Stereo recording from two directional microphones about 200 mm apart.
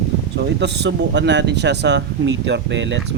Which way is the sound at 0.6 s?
60° right (ahead or behind).